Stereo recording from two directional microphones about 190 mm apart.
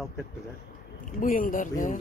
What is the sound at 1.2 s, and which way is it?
Speech, 45° left (ahead or behind).